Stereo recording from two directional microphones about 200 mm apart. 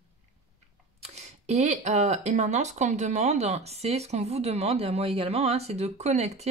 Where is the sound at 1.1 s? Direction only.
35° right (ahead or behind).